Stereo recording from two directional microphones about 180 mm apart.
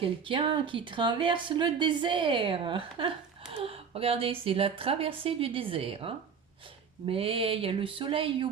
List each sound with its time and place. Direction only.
0.0 s a woman's voice: 30° right (ahead or behind)